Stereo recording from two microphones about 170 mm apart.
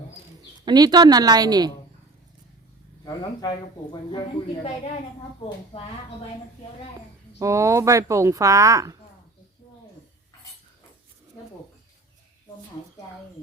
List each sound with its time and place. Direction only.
0.6 s speech: 25° right (ahead or behind)
3.0 s speech: 25° left (ahead or behind)
5.7 s speech: 40° left (ahead or behind)
7.3 s speech: 20° right (ahead or behind)